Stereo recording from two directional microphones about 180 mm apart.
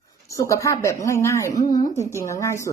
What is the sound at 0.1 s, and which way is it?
Speech, 15° left (ahead or behind).